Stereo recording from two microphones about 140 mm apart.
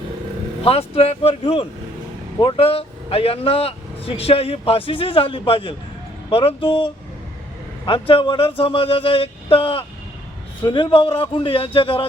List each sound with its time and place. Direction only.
0.6 s speech: 45° left (ahead or behind)